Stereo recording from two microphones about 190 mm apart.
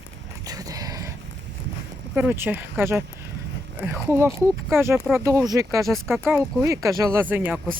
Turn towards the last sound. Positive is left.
turn(degrees=-10)  # may be behind; listen again after turning